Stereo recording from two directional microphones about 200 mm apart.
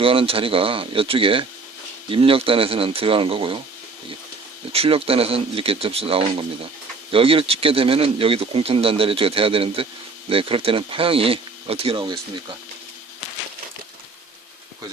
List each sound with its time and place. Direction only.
0.0 s a man's voice: 25° right (ahead or behind)
4.7 s a man's voice: 30° right (ahead or behind)